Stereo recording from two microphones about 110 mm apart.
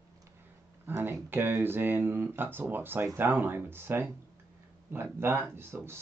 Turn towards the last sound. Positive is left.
turn(degrees=-20)  # may be behind; listen again after turning